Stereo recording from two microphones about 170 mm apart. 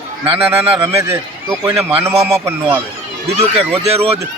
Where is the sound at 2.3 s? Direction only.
15° right (ahead or behind).